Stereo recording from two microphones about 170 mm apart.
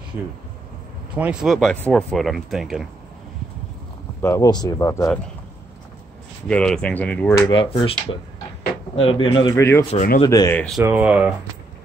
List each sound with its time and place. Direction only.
1.1 s speech: 5° right (ahead or behind)
4.2 s a man's voice: 15° left (ahead or behind)
6.4 s speech: 5° left (ahead or behind)
7.3 s a man's voice: 25° left (ahead or behind)
10.5 s speech: 5° left (ahead or behind)
10.8 s speech: 10° right (ahead or behind)